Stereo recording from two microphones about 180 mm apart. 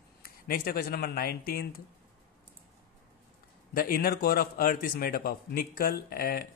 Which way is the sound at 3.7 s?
55° left (ahead or behind).